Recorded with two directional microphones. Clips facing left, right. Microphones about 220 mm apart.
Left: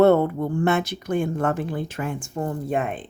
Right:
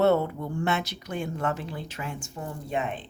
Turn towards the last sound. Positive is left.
turn(degrees=50)  # may be behind; listen again after turning